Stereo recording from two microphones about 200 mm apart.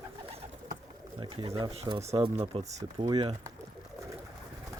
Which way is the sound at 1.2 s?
20° right (ahead or behind).